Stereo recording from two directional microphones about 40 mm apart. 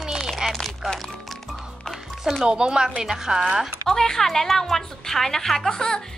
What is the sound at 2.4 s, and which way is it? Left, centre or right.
A woman's voice, centre.